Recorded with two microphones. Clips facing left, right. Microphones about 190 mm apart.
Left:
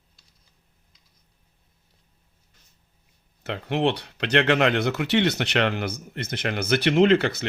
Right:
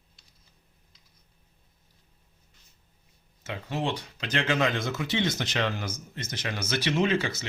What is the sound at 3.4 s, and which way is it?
Speech, 65° left (ahead or behind).